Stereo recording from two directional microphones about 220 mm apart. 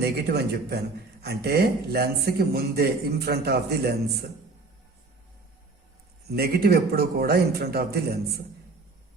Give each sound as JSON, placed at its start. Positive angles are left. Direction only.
{"t": 0.0, "sound": "a man's voice", "side_deg": -45}
{"t": 6.3, "sound": "a man's voice", "side_deg": -45}